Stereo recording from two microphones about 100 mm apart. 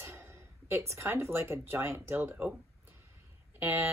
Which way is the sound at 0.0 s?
25° right (ahead or behind).